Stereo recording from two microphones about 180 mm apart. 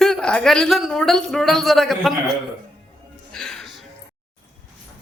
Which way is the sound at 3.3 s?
5° left (ahead or behind).